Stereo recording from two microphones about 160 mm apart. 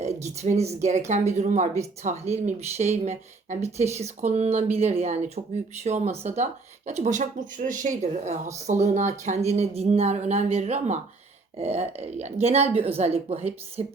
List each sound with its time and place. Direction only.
0.0 s speech: 45° right (ahead or behind)